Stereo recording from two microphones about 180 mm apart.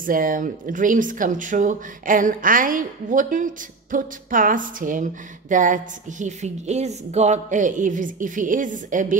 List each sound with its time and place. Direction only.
0.0 s speech: 50° right (ahead or behind)